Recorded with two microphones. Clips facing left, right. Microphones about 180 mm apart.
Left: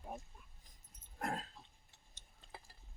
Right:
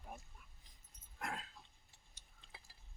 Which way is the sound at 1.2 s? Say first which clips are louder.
Left 5 dB; 40° left (ahead or behind).